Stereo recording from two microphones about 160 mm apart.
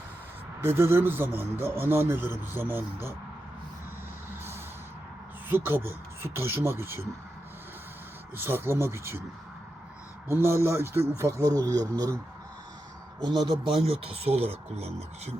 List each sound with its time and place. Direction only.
0.6 s speech: 15° right (ahead or behind)
5.5 s speech: 15° right (ahead or behind)
8.4 s speech: 15° right (ahead or behind)
10.2 s speech: 15° right (ahead or behind)
13.2 s speech: 30° right (ahead or behind)